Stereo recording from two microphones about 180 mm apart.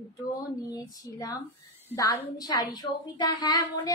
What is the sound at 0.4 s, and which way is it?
A woman's voice, 20° left (ahead or behind).